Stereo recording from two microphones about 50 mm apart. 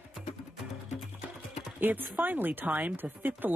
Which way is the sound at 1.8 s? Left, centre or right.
Right.